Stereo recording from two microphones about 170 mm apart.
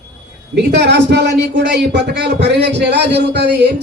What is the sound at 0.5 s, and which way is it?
A man's voice, 80° right.